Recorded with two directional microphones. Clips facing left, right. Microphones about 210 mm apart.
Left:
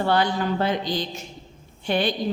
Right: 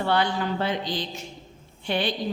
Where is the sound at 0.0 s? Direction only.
40° left (ahead or behind).